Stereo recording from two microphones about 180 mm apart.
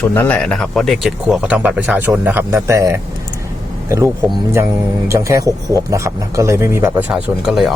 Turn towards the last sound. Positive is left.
turn(degrees=0)  # may be behind; listen again after turning